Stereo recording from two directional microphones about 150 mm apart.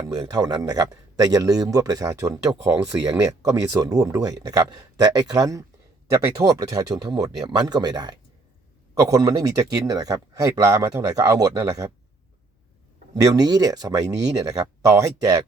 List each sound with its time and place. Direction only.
0.2 s a man's voice: 25° right (ahead or behind)
13.2 s a man's voice: 25° right (ahead or behind)